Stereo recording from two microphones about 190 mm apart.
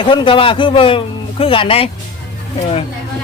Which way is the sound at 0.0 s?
25° left (ahead or behind).